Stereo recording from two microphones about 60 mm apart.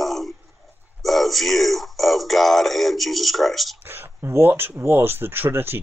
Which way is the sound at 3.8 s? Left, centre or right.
Right.